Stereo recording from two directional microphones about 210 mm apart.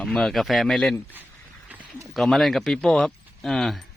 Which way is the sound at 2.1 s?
Centre (ahead or behind).